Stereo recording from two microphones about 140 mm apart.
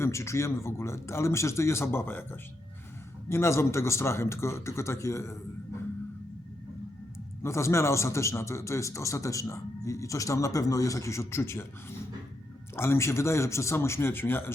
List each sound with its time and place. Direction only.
0.0 s speech: 20° left (ahead or behind)
7.4 s speech: 20° left (ahead or behind)